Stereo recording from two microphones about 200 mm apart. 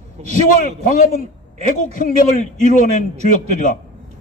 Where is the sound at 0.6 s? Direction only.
45° left (ahead or behind).